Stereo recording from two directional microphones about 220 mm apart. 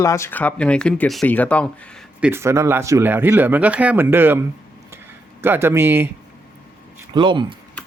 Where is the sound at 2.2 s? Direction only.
10° right (ahead or behind).